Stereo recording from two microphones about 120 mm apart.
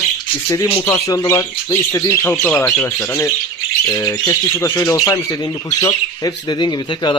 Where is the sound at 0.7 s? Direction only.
20° left (ahead or behind).